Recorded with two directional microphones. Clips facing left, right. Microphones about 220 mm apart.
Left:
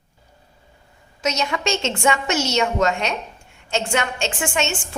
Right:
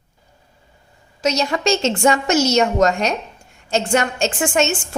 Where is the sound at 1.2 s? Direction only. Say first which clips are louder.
Right 4 dB; 35° right (ahead or behind).